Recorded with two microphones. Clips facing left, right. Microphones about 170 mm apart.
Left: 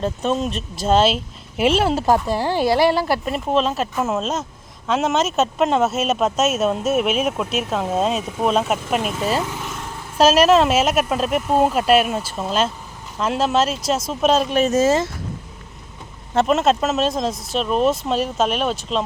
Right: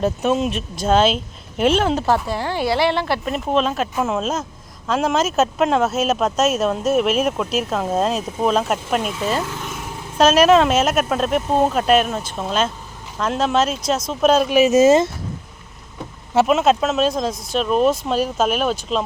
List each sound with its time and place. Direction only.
0.0 s speech: 5° right (ahead or behind); by 2.6 s 10° left (ahead or behind)
2.6 s speech: 45° left (ahead or behind)
2.9 s speech: 5° left (ahead or behind)
9.6 s speech: 5° right (ahead or behind)
16.3 s speech: 5° right (ahead or behind)